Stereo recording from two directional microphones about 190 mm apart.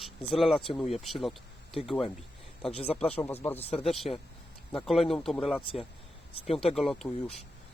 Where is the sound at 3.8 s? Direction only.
30° left (ahead or behind).